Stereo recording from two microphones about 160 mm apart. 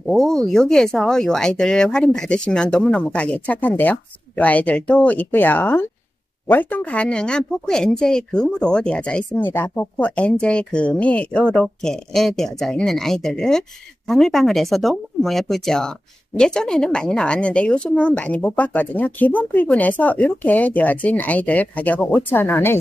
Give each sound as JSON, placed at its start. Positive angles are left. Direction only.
{"t": 0.0, "sound": "speech", "side_deg": 0}